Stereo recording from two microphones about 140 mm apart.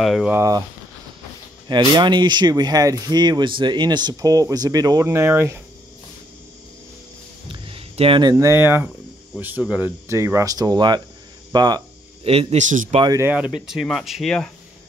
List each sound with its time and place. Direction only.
0.0 s speech: centre (ahead or behind)
0.3 s speech: 25° right (ahead or behind)
1.7 s speech: 35° right (ahead or behind); by 5.6 s 20° right (ahead or behind)
7.4 s a sound: 40° right (ahead or behind)
8.2 s speech: 25° right (ahead or behind); by 9.8 s 10° right (ahead or behind)
10.0 s speech: 20° right (ahead or behind)
12.2 s a man's voice: 45° right (ahead or behind); by 12.9 s 65° right (ahead or behind)
13.3 s speech: 5° right (ahead or behind)